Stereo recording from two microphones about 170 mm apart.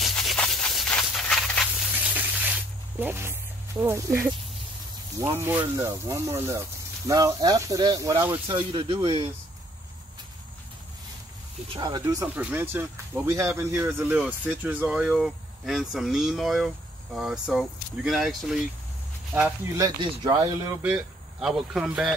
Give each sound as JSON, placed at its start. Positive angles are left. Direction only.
{"t": 0.0, "sound": "a sound", "side_deg": 0}
{"t": 3.8, "sound": "speech", "side_deg": -15}
{"t": 11.7, "sound": "speech", "side_deg": -25}
{"t": 12.4, "sound": "speech", "side_deg": -10}
{"t": 19.7, "sound": "speech", "side_deg": -25}
{"t": 20.8, "sound": "speech", "side_deg": -5}